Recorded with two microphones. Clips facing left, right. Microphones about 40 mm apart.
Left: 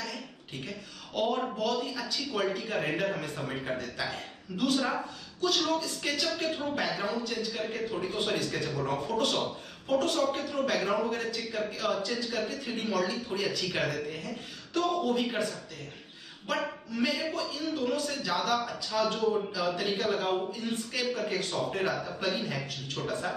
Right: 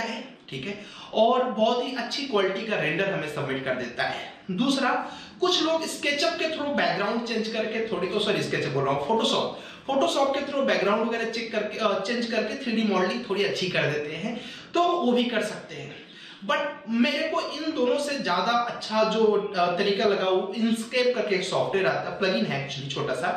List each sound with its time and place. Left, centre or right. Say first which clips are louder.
0.7 s speech: right 6 dB; right